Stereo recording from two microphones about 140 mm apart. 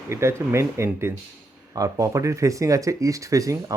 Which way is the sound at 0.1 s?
20° right (ahead or behind).